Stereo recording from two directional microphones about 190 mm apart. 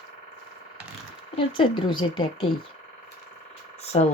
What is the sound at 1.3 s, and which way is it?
Speech, 25° left (ahead or behind).